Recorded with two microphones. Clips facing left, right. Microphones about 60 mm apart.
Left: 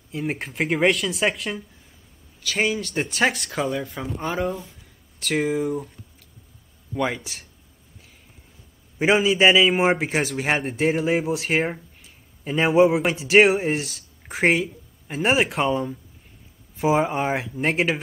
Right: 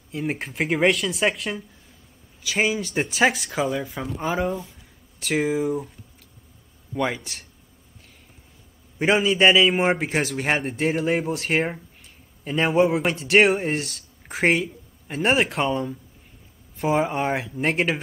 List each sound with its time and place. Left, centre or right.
0.1 s speech: centre
6.9 s speech: centre
8.9 s speech: centre